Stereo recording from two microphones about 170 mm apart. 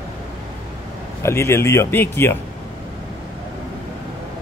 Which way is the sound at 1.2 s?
15° left (ahead or behind).